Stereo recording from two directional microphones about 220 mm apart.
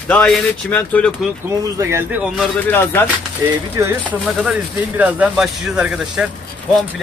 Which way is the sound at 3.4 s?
15° right (ahead or behind).